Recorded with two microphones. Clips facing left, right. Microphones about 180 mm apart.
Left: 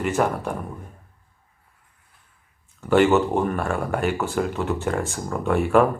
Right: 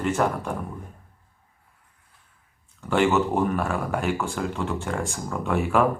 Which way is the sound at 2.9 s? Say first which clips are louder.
Left 4 dB; centre (ahead or behind).